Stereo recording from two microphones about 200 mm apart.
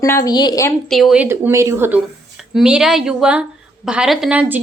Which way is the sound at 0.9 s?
Centre (ahead or behind).